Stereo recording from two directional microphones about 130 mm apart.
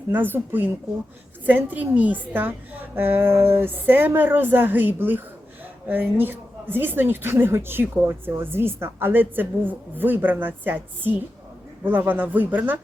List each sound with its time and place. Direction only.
0.1 s a woman's voice: 15° right (ahead or behind)